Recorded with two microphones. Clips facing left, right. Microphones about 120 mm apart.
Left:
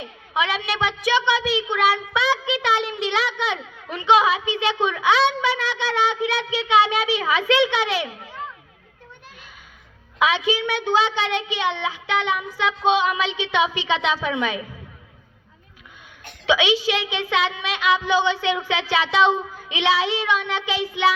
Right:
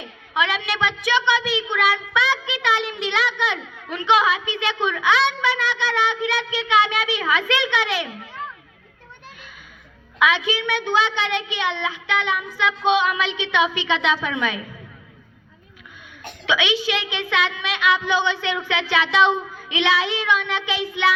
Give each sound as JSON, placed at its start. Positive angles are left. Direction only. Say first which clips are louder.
{"t": 0.0, "sound": "a woman's voice", "louder": "even", "side_deg": 35}
{"t": 10.2, "sound": "a woman's voice", "louder": "even", "side_deg": 35}
{"t": 16.5, "sound": "a woman's voice", "louder": "left 2 dB", "side_deg": 35}